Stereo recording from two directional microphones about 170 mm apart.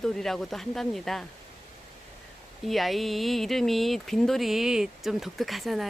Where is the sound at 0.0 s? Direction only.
5° left (ahead or behind).